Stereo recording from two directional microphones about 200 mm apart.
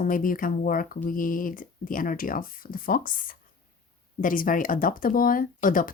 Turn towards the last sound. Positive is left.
turn(degrees=40)  # may be behind; listen again after turning